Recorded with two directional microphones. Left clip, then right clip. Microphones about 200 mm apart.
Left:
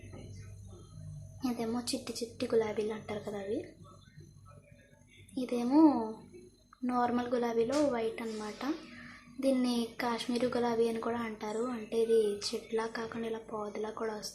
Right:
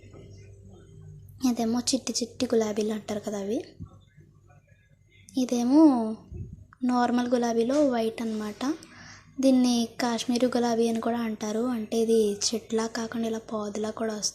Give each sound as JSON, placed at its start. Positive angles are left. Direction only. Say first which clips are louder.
{"t": 1.4, "sound": "speech", "louder": "right 8 dB", "side_deg": -35}
{"t": 5.3, "sound": "speech", "louder": "right 7 dB", "side_deg": -35}